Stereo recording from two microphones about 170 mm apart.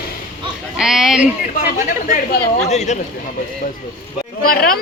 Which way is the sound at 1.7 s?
50° left (ahead or behind).